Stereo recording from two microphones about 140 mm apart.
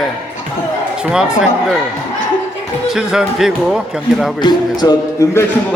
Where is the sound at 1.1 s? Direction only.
5° right (ahead or behind).